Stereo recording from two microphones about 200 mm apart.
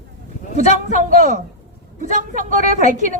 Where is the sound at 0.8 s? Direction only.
40° right (ahead or behind).